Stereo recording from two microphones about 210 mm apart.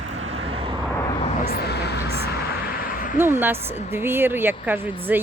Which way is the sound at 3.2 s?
10° right (ahead or behind).